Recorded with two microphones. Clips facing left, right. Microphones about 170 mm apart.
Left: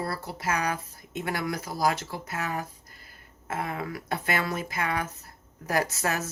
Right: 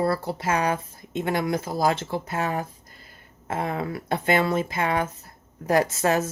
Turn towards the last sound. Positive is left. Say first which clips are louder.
# right 6 dB
turn(degrees=-25)  # may be behind; listen again after turning